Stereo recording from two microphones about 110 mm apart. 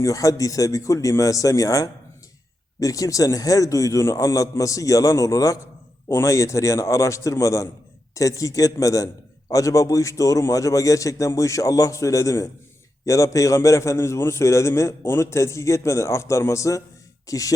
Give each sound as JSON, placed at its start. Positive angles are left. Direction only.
{"t": 0.0, "sound": "a man's voice", "side_deg": 30}